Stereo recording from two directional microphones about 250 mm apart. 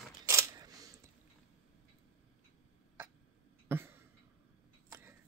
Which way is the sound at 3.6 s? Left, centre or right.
Centre.